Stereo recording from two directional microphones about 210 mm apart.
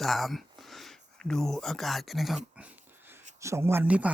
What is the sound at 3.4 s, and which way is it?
Speech, 10° right (ahead or behind).